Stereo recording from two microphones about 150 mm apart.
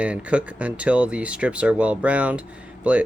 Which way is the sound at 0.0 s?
10° right (ahead or behind).